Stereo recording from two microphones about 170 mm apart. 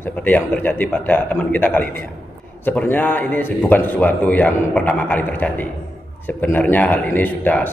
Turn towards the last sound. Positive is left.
turn(degrees=10)  # may be behind; listen again after turning